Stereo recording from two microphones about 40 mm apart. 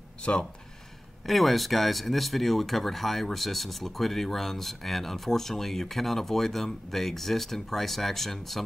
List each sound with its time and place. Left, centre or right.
0.2 s speech: left
1.2 s speech: centre